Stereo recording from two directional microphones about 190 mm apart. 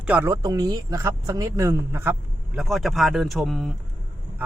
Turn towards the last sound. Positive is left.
turn(degrees=0)  # may be behind; listen again after turning